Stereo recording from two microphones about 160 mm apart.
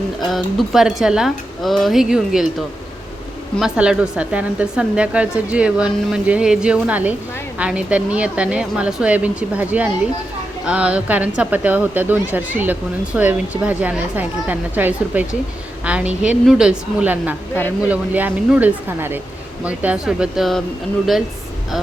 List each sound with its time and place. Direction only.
0.3 s speech: centre (ahead or behind)